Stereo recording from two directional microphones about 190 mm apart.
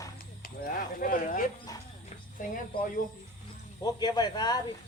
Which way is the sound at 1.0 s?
45° left (ahead or behind).